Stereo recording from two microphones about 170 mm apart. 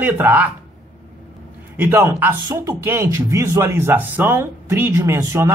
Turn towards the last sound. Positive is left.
turn(degrees=-15)  # may be behind; listen again after turning